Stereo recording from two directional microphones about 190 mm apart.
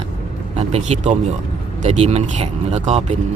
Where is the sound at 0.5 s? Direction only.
35° right (ahead or behind).